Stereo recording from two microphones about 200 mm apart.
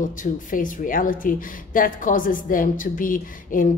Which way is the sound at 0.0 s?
40° left (ahead or behind).